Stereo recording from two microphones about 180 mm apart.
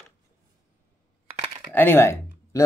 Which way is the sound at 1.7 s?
10° left (ahead or behind).